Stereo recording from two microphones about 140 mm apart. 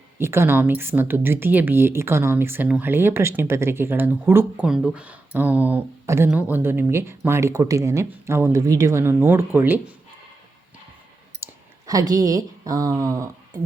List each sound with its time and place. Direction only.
0.2 s speech: 15° right (ahead or behind)
11.4 s clicking: 15° right (ahead or behind)
11.9 s speech: 25° right (ahead or behind)